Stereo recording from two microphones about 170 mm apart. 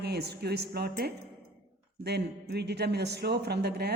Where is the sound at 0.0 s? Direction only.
75° right (ahead or behind).